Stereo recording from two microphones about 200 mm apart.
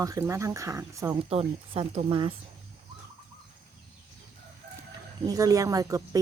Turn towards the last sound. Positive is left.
turn(degrees=-15)  # may be behind; listen again after turning